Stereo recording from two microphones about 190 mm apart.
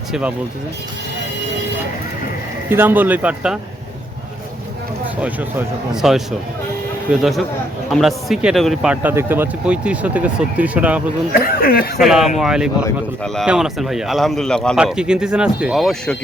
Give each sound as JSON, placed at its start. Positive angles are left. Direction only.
{"t": 0.1, "sound": "speech", "side_deg": -5}
{"t": 2.6, "sound": "speech", "side_deg": -10}
{"t": 5.2, "sound": "speech", "side_deg": -10}
{"t": 11.3, "sound": "speech", "side_deg": 50}
{"t": 11.9, "sound": "speech", "side_deg": 0}